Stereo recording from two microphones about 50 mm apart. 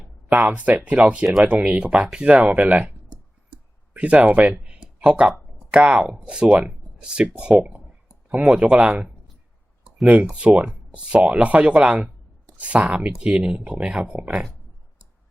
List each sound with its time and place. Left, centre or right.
0.3 s speech: right
3.9 s speech: right
4.6 s a sound: right
5.8 s speech: right
10.5 s speech: right